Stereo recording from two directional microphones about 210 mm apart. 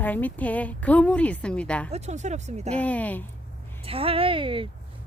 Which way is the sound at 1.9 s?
30° right (ahead or behind).